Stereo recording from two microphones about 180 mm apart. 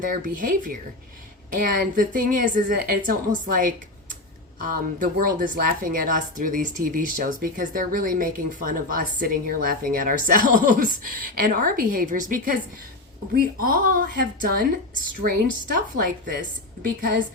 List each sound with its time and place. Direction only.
0.0 s speech: 50° right (ahead or behind)
13.6 s speech: 55° right (ahead or behind)